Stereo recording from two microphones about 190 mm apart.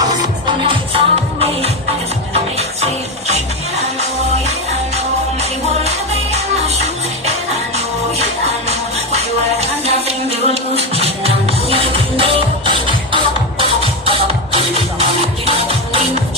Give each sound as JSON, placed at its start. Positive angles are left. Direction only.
{"t": 0.0, "sound": "music", "side_deg": -25}
{"t": 4.9, "sound": "music", "side_deg": -35}
{"t": 10.1, "sound": "music", "side_deg": -35}